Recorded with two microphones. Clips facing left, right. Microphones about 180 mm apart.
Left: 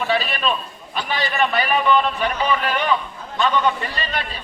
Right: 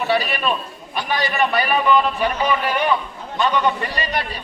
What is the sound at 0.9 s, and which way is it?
A man's voice, 15° right (ahead or behind).